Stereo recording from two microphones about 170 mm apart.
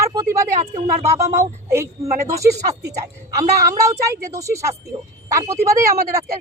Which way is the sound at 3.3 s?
20° right (ahead or behind).